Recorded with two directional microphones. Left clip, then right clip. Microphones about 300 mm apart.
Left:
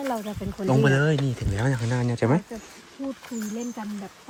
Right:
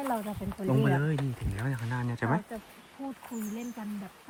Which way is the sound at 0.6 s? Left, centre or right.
Centre.